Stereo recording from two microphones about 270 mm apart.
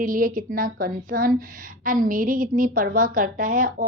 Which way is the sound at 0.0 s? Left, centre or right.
Right.